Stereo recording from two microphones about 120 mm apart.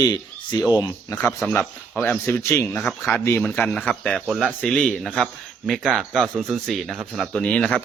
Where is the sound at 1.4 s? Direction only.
10° left (ahead or behind).